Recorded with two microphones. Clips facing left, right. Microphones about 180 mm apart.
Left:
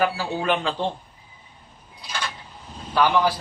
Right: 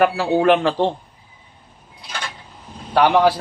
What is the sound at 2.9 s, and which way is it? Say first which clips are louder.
Speech: right 5 dB; 65° right (ahead or behind).